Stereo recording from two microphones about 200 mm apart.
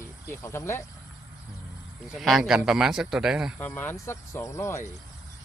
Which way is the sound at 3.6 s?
10° left (ahead or behind).